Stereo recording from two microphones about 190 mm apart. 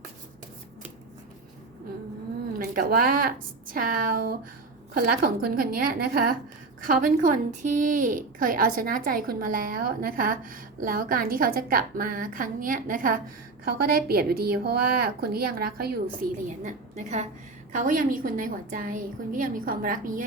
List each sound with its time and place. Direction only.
2.5 s a woman's voice: 50° right (ahead or behind)
16.6 s a woman's voice: 40° right (ahead or behind)